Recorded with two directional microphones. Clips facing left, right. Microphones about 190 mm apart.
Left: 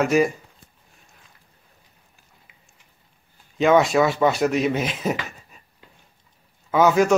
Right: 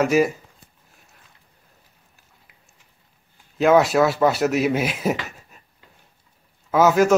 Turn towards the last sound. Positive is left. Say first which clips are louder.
# right 1 dB
turn(degrees=0)  # may be behind; listen again after turning